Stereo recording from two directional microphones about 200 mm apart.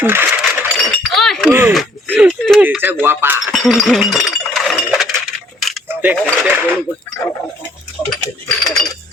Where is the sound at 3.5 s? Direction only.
Centre (ahead or behind).